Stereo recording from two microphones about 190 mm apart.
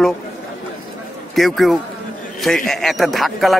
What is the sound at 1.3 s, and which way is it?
A man's voice, centre (ahead or behind).